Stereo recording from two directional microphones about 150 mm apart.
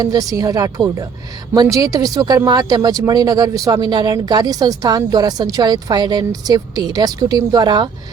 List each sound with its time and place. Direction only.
0.0 s speech: 25° right (ahead or behind)